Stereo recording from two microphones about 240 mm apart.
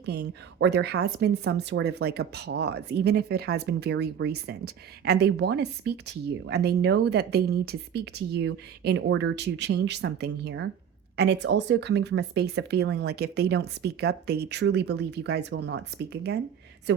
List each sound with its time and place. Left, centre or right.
0.0 s speech: right